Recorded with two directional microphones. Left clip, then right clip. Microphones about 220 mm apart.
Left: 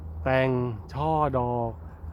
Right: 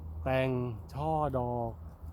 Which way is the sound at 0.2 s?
10° left (ahead or behind).